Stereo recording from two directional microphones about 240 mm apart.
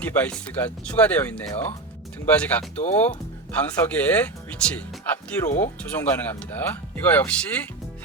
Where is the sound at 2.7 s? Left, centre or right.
Left.